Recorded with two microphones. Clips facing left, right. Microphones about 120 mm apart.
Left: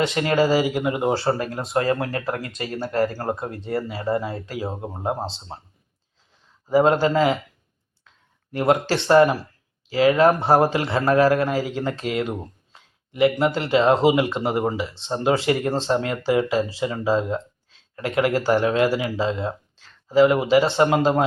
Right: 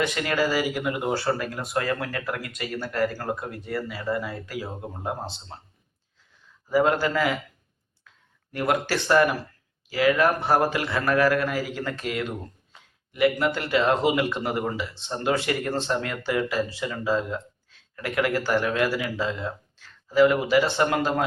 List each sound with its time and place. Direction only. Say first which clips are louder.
0.0 s speech: left 5 dB; 25° left (ahead or behind)
6.7 s speech: left 4 dB; 25° left (ahead or behind)
8.5 s speech: left 5 dB; 25° left (ahead or behind)
13.4 s speech: left 4 dB; 25° left (ahead or behind)